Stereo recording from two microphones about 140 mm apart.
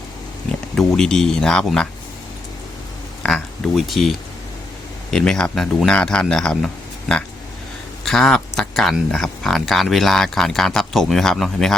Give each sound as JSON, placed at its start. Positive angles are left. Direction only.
{"t": 0.8, "sound": "speech", "side_deg": 5}
{"t": 3.2, "sound": "speech", "side_deg": 0}
{"t": 5.1, "sound": "speech", "side_deg": 5}
{"t": 8.0, "sound": "speech", "side_deg": 0}